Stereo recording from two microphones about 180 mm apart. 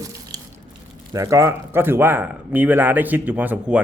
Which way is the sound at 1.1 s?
15° right (ahead or behind).